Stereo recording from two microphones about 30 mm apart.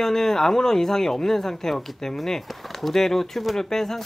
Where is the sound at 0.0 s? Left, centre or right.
Centre.